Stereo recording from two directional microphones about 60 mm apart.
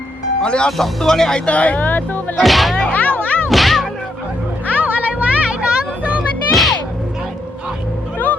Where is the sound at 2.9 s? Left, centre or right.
Left.